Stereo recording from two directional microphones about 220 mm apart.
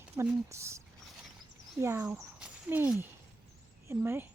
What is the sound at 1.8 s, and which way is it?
A woman's voice, 10° right (ahead or behind).